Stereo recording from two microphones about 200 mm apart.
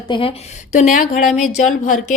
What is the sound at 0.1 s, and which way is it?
Speech, 25° left (ahead or behind).